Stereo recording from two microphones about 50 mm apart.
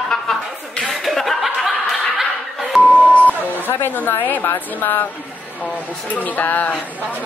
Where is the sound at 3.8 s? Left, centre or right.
Left.